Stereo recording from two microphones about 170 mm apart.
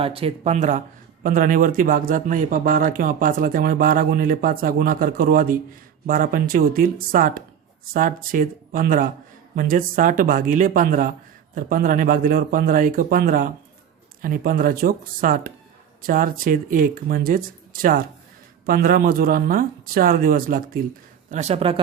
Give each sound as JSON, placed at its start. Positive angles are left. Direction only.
{"t": 0.0, "sound": "speech", "side_deg": -35}
{"t": 21.2, "sound": "speech", "side_deg": -40}